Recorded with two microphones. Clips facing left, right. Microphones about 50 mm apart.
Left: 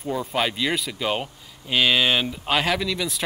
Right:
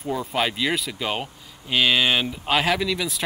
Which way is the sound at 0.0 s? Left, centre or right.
Centre.